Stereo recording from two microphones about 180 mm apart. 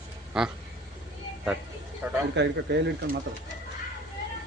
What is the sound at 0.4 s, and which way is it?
Speech, 5° right (ahead or behind).